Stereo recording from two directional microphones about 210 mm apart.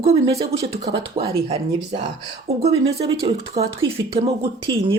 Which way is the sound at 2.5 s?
30° right (ahead or behind).